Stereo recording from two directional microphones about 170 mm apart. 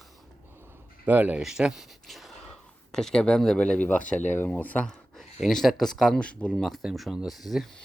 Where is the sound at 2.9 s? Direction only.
5° left (ahead or behind).